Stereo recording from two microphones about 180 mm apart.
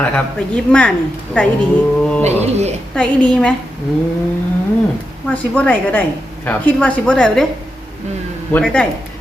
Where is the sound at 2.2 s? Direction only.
35° right (ahead or behind).